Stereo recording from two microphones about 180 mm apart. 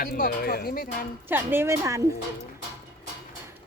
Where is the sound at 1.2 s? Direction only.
10° right (ahead or behind).